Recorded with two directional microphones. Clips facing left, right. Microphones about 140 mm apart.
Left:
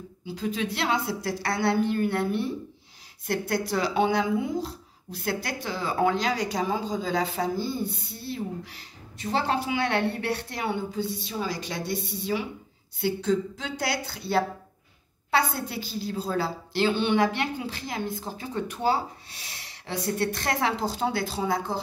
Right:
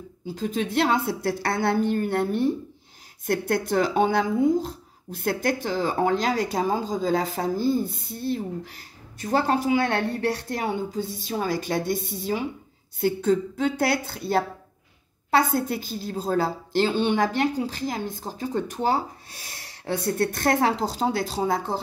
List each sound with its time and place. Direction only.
0.3 s speech: 45° right (ahead or behind)